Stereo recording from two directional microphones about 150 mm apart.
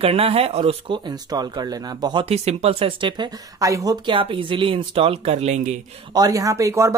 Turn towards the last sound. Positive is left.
turn(degrees=-20)  # may be behind; listen again after turning